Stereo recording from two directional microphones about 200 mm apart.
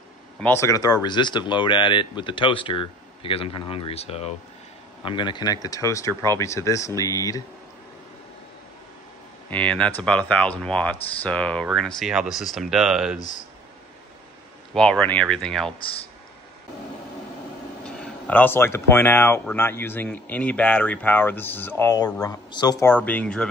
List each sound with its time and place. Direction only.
0.4 s speech: 10° left (ahead or behind)
9.5 s speech: 5° left (ahead or behind)
14.7 s speech: 5° left (ahead or behind)
17.8 s speech: 5° left (ahead or behind)